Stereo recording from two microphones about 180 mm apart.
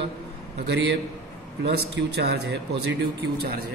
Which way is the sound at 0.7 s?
85° right.